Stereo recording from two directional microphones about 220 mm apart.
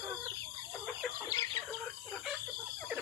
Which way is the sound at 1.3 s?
15° left (ahead or behind).